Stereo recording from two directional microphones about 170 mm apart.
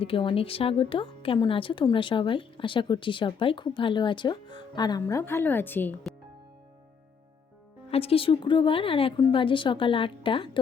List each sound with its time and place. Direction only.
0.0 s speech: 30° left (ahead or behind); by 6.0 s 10° left (ahead or behind)
7.9 s a woman's voice: 35° left (ahead or behind)